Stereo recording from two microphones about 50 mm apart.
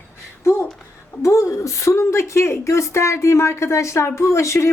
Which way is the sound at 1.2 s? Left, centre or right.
Left.